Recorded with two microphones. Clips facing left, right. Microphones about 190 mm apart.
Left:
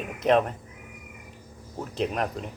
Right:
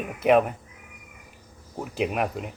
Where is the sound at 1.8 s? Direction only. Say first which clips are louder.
Right 2 dB; 10° right (ahead or behind).